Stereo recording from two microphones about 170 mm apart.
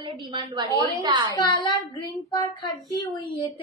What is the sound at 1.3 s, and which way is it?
Speech, 25° left (ahead or behind).